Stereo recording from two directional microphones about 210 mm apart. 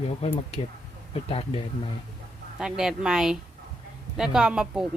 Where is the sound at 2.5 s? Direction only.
5° right (ahead or behind).